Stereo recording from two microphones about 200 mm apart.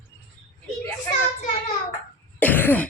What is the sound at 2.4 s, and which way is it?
Cough, 10° left (ahead or behind).